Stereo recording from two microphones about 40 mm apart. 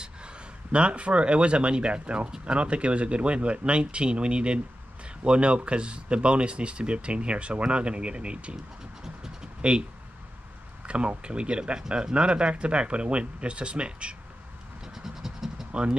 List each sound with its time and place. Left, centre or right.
0.0 s speech: right
9.0 s a sound: centre
9.6 s speech: right
10.9 s speech: right
15.0 s scratch: centre
15.7 s speech: right